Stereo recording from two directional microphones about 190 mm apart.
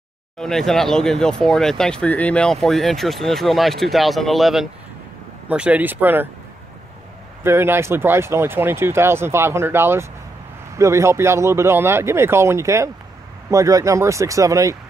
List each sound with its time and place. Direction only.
0.4 s speech: centre (ahead or behind)
7.4 s speech: 10° right (ahead or behind)